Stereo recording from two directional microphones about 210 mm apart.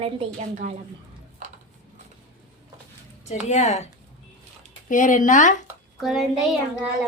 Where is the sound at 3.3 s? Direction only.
30° left (ahead or behind).